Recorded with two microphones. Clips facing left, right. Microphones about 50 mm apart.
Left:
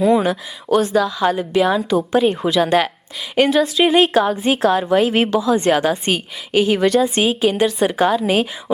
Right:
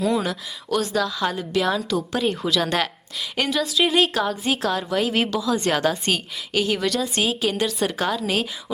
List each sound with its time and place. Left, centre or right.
0.0 s a woman's voice: left
0.9 s a woman's voice: centre
3.8 s a woman's voice: left
5.6 s a woman's voice: centre